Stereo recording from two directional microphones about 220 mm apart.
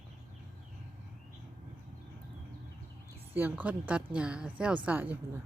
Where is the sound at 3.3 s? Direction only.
10° right (ahead or behind).